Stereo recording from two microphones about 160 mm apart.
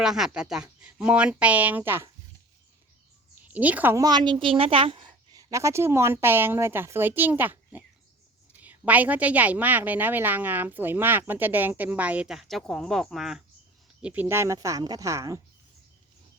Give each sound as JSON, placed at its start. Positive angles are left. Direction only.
{"t": 0.0, "sound": "a woman's voice", "side_deg": -5}
{"t": 3.5, "sound": "a woman's voice", "side_deg": -10}
{"t": 4.0, "sound": "a woman's voice", "side_deg": -30}